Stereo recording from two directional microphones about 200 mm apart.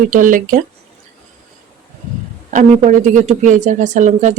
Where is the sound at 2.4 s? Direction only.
40° right (ahead or behind).